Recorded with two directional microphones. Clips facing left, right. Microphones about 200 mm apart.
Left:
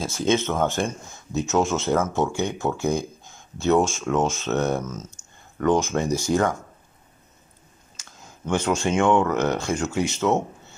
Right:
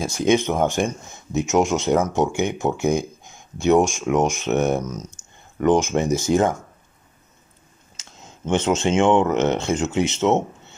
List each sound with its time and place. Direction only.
0.0 s speech: 15° right (ahead or behind)
7.9 s speech: 25° right (ahead or behind)